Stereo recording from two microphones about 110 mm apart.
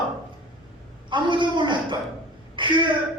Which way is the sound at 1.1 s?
45° right (ahead or behind).